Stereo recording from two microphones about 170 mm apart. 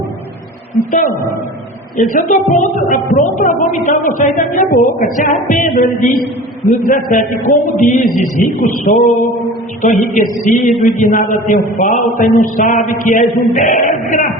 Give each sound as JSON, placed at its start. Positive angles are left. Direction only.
{"t": 0.9, "sound": "a woman's voice", "side_deg": 50}